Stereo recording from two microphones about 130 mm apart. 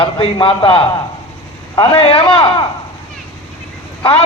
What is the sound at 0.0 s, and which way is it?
A man's voice, 40° left (ahead or behind).